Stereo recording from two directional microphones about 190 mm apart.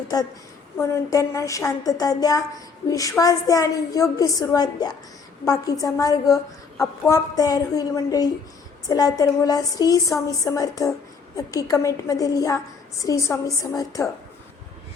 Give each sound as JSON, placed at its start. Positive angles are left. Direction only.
{"t": 0.8, "sound": "a woman's voice", "side_deg": 15}